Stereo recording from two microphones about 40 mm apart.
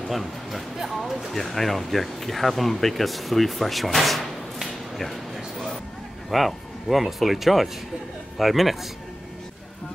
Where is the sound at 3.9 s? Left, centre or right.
Centre.